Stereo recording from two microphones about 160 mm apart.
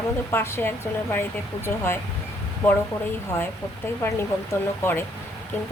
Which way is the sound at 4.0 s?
15° left (ahead or behind).